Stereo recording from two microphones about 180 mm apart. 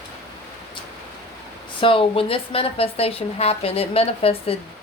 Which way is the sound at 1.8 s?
30° left (ahead or behind).